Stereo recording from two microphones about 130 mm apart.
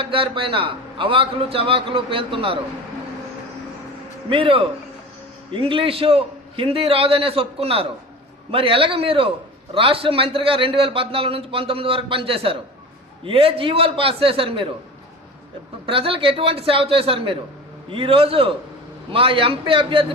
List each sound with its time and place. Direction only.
0.0 s a man's voice: 40° right (ahead or behind)
4.3 s a man's voice: 45° right (ahead or behind)
15.9 s a man's voice: 45° right (ahead or behind)